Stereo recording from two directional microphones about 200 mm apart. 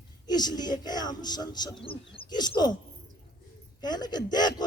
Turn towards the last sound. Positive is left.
turn(degrees=20)  # may be behind; listen again after turning